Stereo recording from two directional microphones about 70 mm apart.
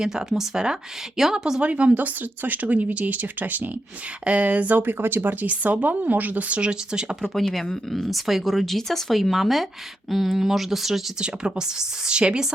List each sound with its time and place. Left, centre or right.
0.0 s speech: centre
7.3 s speech: centre